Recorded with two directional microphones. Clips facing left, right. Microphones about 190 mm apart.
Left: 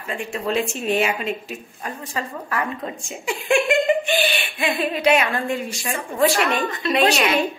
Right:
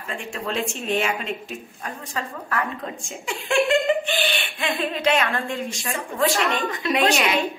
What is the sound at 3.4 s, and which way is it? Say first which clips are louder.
Speech: left 1 dB; 15° left (ahead or behind).